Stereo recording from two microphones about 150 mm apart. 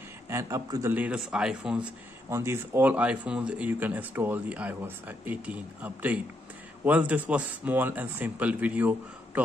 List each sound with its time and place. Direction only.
0.3 s speech: 20° right (ahead or behind)
0.9 s speech: 10° right (ahead or behind)